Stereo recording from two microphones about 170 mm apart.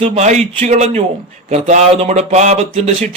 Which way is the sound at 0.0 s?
40° right (ahead or behind).